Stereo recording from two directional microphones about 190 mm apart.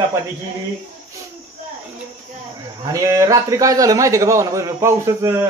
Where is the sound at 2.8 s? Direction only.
15° right (ahead or behind).